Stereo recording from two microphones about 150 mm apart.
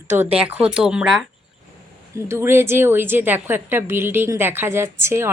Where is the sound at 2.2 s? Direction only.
15° right (ahead or behind).